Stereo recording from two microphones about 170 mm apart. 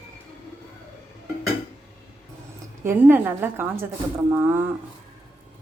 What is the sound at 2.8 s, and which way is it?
Speech, 10° right (ahead or behind).